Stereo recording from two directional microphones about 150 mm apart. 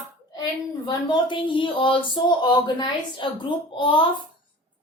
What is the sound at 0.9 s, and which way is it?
Speech, 30° left (ahead or behind).